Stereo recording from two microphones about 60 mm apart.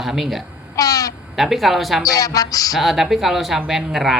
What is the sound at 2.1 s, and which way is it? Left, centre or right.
Speech, left.